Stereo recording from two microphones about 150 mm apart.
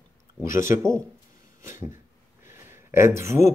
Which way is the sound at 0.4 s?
20° right (ahead or behind).